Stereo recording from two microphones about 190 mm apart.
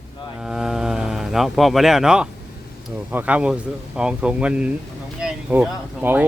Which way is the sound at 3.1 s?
10° right (ahead or behind).